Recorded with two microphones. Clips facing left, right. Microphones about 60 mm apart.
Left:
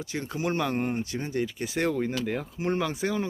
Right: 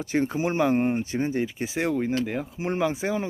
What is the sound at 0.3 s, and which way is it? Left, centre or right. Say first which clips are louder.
Speech: right 2 dB; centre.